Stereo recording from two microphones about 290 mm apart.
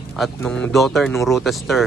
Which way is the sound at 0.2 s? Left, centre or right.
Centre.